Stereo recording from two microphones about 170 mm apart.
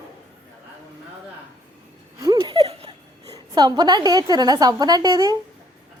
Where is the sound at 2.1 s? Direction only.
20° right (ahead or behind).